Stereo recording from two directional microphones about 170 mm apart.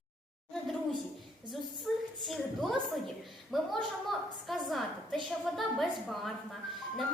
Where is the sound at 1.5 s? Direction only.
Centre (ahead or behind).